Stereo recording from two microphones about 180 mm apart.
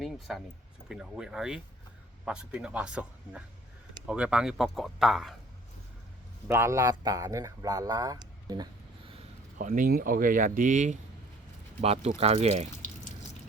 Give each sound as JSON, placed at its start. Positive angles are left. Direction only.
{"t": 0.0, "sound": "speech", "side_deg": 0}
{"t": 6.5, "sound": "speech", "side_deg": -15}
{"t": 9.6, "sound": "speech", "side_deg": -50}
{"t": 11.8, "sound": "speech", "side_deg": -35}